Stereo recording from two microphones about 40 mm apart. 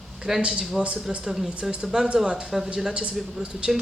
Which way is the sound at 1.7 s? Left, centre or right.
Right.